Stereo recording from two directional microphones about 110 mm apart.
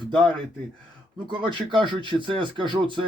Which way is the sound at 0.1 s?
10° left (ahead or behind).